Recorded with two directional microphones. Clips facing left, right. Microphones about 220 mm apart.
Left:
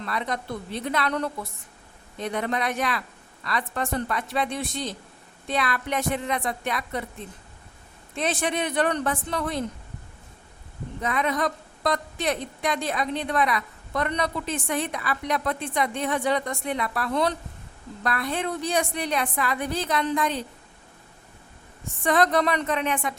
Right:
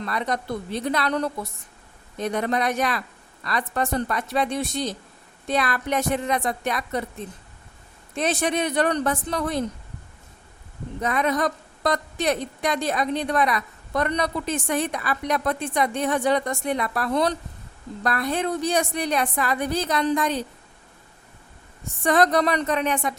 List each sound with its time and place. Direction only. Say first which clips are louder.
0.0 s a woman's voice: right 3 dB; 40° right (ahead or behind)
8.1 s a woman's voice: right 3 dB; 40° right (ahead or behind)
11.0 s a woman's voice: right 3 dB; 45° right (ahead or behind)
22.0 s a woman's voice: right 2 dB; 40° right (ahead or behind)